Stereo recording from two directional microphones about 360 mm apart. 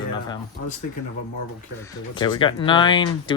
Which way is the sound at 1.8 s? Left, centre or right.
Centre.